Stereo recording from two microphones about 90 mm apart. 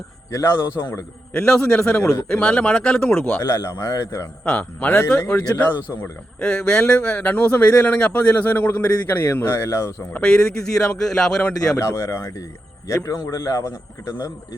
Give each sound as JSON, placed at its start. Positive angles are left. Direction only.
{"t": 0.3, "sound": "speech", "side_deg": 30}
{"t": 1.3, "sound": "a man's voice", "side_deg": 10}
{"t": 3.4, "sound": "a man's voice", "side_deg": 30}
{"t": 4.4, "sound": "a man's voice", "side_deg": 15}
{"t": 10.1, "sound": "a man's voice", "side_deg": 10}
{"t": 11.8, "sound": "a man's voice", "side_deg": 30}